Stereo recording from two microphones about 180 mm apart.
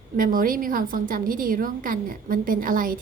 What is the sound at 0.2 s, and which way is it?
A woman's voice, 50° right (ahead or behind).